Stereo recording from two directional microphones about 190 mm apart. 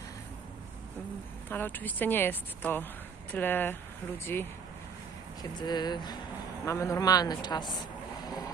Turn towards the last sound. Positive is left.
turn(degrees=20)  # may be behind; listen again after turning